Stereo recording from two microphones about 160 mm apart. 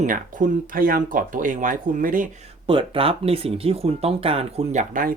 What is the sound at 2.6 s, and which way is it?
Speech, 35° right (ahead or behind).